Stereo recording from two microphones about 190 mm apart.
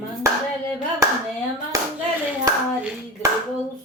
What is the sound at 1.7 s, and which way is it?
Hands, 20° right (ahead or behind).